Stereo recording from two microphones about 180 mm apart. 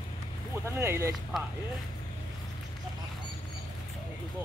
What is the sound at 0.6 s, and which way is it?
Speech, 15° right (ahead or behind).